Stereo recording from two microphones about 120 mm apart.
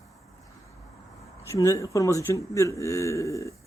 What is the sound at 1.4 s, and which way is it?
Speech, 25° left (ahead or behind).